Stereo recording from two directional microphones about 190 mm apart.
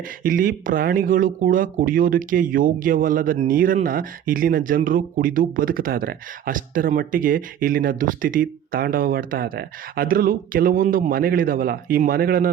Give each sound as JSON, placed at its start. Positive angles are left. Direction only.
{"t": 0.2, "sound": "speech", "side_deg": -45}